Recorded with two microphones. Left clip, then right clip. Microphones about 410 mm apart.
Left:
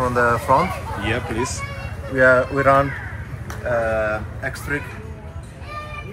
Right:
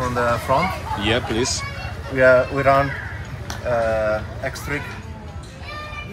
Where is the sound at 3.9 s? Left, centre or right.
Centre.